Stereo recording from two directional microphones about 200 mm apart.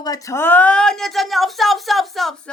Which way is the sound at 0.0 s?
15° left (ahead or behind).